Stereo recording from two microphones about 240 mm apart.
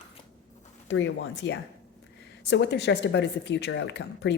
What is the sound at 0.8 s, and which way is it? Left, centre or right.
Speech, left.